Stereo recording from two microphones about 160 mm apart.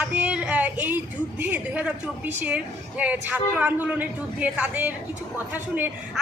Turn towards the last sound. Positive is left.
turn(degrees=-10)  # may be behind; listen again after turning